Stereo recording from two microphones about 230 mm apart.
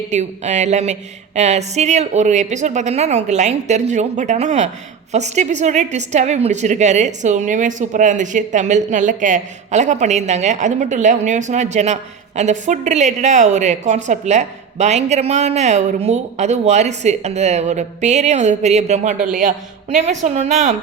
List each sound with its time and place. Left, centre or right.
0.1 s a woman's voice: right